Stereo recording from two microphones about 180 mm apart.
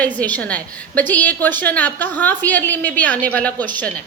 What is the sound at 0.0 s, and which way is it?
A woman's voice, 10° left (ahead or behind).